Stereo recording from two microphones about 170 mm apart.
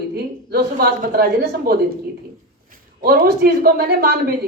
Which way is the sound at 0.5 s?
65° right (ahead or behind).